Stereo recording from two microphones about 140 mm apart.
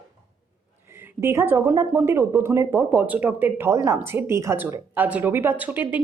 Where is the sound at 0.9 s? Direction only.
15° right (ahead or behind).